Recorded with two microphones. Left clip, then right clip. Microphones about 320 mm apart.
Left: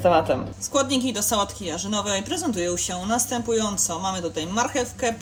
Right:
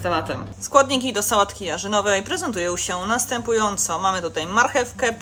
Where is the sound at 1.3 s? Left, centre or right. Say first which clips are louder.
Right 7 dB; right.